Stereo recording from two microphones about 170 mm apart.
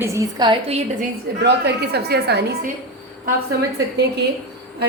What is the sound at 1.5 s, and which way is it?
Speech, 75° right (ahead or behind).